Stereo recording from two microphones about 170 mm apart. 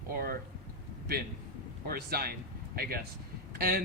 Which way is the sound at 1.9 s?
60° right (ahead or behind).